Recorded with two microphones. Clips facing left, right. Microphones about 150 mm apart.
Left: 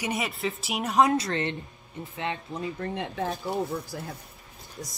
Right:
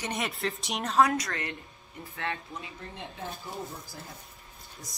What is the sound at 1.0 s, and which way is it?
Speech, 25° left (ahead or behind).